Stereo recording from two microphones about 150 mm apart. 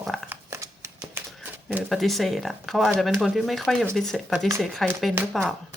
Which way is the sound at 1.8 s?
Centre (ahead or behind).